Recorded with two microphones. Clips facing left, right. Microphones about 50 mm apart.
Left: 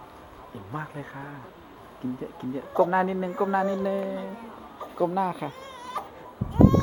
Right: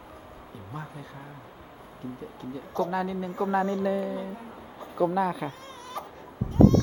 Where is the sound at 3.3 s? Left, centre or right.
Centre.